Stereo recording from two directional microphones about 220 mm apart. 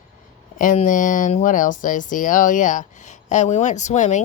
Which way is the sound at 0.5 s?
35° left (ahead or behind).